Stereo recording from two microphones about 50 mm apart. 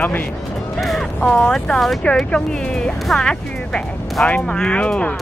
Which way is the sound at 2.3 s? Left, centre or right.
Centre.